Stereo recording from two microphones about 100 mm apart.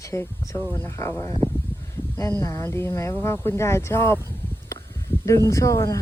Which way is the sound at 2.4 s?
30° left (ahead or behind).